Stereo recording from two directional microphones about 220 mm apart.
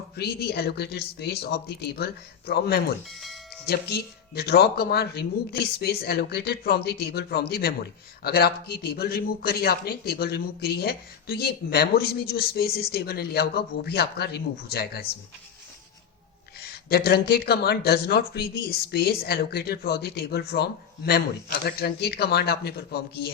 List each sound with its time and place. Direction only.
0.2 s a man's voice: 45° left (ahead or behind)
3.1 s speech: centre (ahead or behind)
3.7 s a man's voice: 45° left (ahead or behind)
16.6 s a man's voice: 45° left (ahead or behind)